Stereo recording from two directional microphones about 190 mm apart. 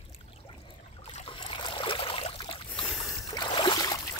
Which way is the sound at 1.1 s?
30° left (ahead or behind).